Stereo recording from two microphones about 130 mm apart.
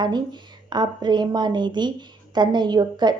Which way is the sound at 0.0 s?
35° right (ahead or behind).